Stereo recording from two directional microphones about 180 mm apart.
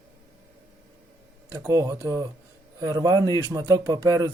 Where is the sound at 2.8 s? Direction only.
20° right (ahead or behind).